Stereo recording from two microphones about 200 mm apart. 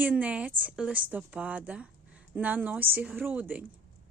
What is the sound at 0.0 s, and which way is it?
Speech, 5° right (ahead or behind).